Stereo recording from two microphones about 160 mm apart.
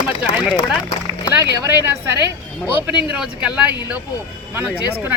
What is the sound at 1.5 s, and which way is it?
Speech, 20° right (ahead or behind).